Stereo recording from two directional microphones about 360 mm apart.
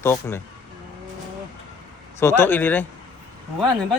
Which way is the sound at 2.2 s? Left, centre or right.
Centre.